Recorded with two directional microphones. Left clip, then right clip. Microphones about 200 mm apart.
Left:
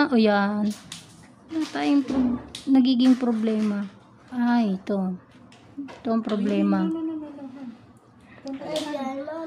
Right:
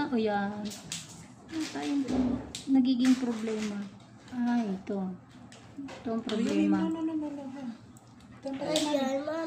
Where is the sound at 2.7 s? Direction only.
60° left (ahead or behind).